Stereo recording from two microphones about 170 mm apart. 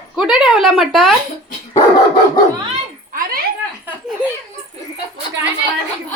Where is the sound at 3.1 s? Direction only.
60° right (ahead or behind).